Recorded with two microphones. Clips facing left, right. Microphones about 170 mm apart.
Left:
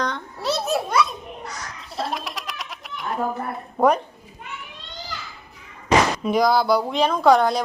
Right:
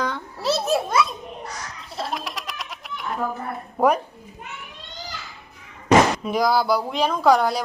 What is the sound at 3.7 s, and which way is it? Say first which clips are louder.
Speech: left 1 dB; 10° right (ahead or behind).